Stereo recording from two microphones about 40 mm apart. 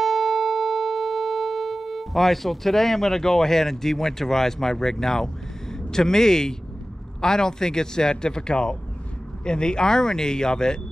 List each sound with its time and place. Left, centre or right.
0.0 s music: centre
5.9 s speech: centre